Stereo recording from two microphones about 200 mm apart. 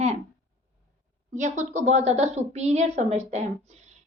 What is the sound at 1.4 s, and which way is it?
Speech, 35° right (ahead or behind).